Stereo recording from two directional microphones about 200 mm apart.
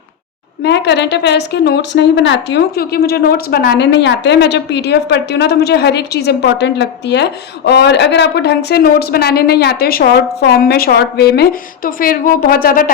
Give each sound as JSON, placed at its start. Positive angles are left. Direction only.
{"t": 0.6, "sound": "a woman's voice", "side_deg": 55}